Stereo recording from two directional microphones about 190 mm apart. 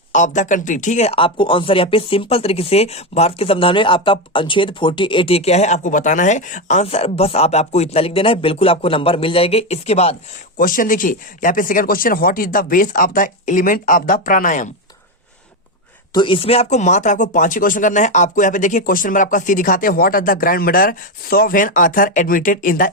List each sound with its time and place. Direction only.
0.1 s speech: 40° left (ahead or behind)
10.6 s speech: 45° left (ahead or behind)
16.1 s speech: 25° left (ahead or behind); by 22.9 s 45° left (ahead or behind)